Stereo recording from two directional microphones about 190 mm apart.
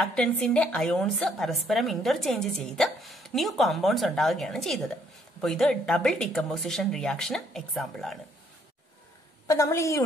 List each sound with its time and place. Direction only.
0.0 s a woman's voice: 5° left (ahead or behind)
9.5 s a woman's voice: 15° left (ahead or behind)